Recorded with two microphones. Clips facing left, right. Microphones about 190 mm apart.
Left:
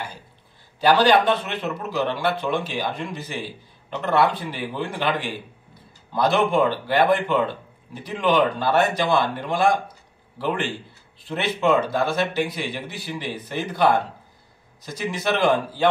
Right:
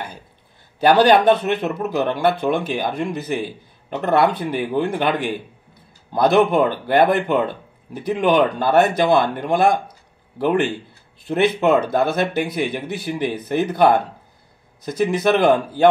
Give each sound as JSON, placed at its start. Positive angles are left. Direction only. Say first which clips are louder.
{"t": 0.7, "sound": "a man's voice", "louder": "right 4 dB", "side_deg": -55}
{"t": 15.2, "sound": "speech", "louder": "right 3 dB", "side_deg": -55}